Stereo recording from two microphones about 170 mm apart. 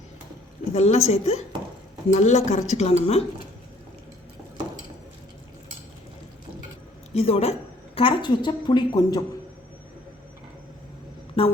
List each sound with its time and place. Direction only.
0.7 s speech: 40° left (ahead or behind)
7.1 s a woman's voice: 35° left (ahead or behind)
11.4 s speech: 35° left (ahead or behind)